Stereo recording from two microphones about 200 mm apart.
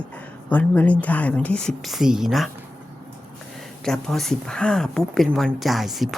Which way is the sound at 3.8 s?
Centre (ahead or behind).